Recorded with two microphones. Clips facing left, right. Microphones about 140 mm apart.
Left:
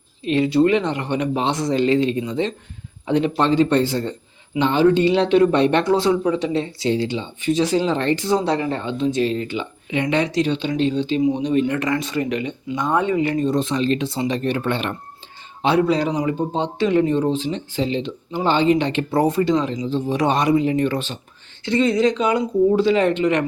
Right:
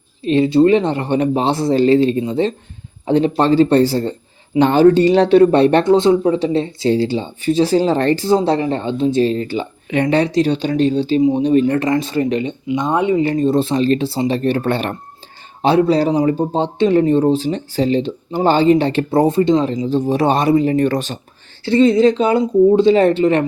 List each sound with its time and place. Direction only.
0.3 s speech: 30° right (ahead or behind)
5.8 s speech: 25° right (ahead or behind)
11.2 s speech: 25° right (ahead or behind)
11.4 s speech: 40° right (ahead or behind); by 13.1 s 20° right (ahead or behind)
13.1 s speech: 30° right (ahead or behind)
19.1 s speech: 25° right (ahead or behind)
19.7 s speech: 45° right (ahead or behind)
21.6 s speech: 30° right (ahead or behind)